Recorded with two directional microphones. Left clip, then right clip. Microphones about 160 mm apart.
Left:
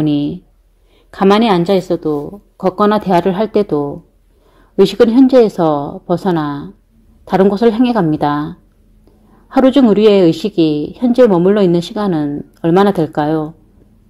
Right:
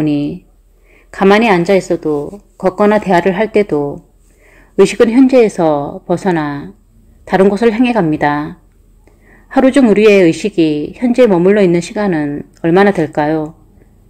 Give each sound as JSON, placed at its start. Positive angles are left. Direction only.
{"t": 1.4, "sound": "a woman's voice", "side_deg": 45}
{"t": 1.9, "sound": "a woman's voice", "side_deg": 20}
{"t": 10.6, "sound": "speech", "side_deg": -10}
{"t": 10.9, "sound": "a woman's voice", "side_deg": 15}